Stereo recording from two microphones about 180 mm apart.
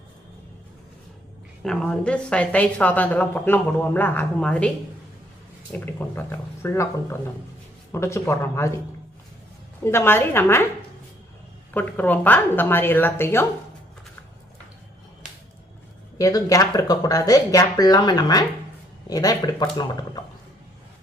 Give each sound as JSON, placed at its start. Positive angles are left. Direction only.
{"t": 1.6, "sound": "a woman's voice", "side_deg": 5}
{"t": 5.7, "sound": "a woman's voice", "side_deg": 10}
{"t": 9.8, "sound": "a woman's voice", "side_deg": 15}
{"t": 11.7, "sound": "a woman's voice", "side_deg": 10}
{"t": 16.1, "sound": "speech", "side_deg": 20}